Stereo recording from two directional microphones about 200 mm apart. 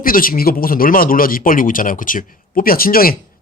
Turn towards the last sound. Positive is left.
turn(degrees=45)  # may be behind; listen again after turning